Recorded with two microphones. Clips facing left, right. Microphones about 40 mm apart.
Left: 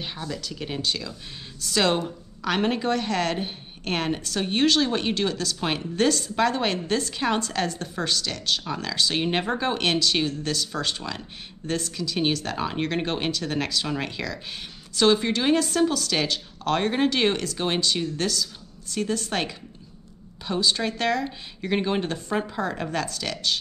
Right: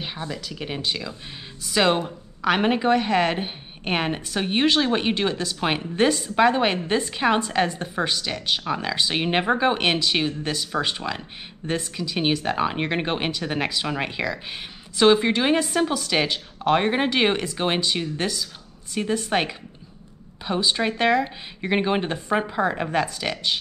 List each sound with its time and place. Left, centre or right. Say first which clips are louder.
0.3 s a woman's voice: right 1 dB; centre